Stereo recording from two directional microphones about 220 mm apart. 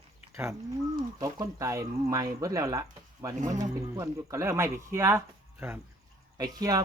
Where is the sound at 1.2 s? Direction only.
15° right (ahead or behind).